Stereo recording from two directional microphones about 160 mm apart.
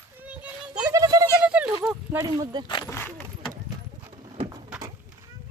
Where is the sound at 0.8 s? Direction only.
20° right (ahead or behind).